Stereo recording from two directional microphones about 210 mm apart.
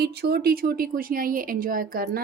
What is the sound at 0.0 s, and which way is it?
A woman's voice, 50° right (ahead or behind).